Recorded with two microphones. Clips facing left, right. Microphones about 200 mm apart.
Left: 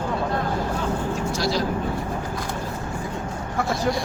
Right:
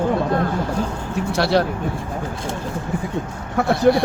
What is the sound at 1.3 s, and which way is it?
Speech, 65° right (ahead or behind).